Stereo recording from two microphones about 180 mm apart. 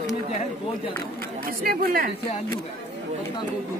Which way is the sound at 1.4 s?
55° right (ahead or behind).